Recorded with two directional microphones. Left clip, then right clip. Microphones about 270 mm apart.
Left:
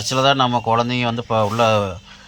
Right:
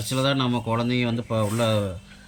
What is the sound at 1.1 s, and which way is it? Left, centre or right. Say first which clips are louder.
Speech: left 7 dB; left.